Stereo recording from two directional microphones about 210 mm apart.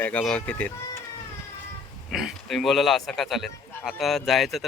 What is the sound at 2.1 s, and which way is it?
Speech, centre (ahead or behind).